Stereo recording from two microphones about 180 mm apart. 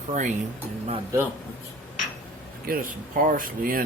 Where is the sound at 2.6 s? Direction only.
55° right (ahead or behind).